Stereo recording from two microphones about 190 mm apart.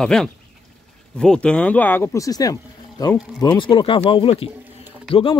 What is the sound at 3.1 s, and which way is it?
Speech, centre (ahead or behind).